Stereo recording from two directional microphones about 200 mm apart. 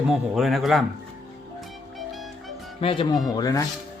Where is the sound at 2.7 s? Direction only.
25° left (ahead or behind).